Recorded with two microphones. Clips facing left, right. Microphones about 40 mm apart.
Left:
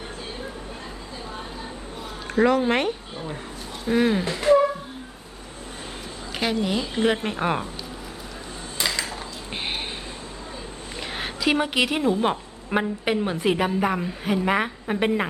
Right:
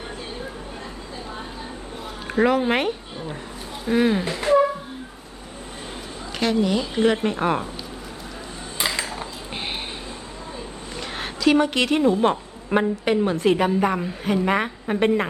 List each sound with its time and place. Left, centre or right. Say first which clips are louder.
2.3 s speech: even; centre
6.4 s a woman's voice: right 3 dB; centre
8.8 s cutlery: right 1 dB; centre
11.2 s a woman's voice: right 4 dB; centre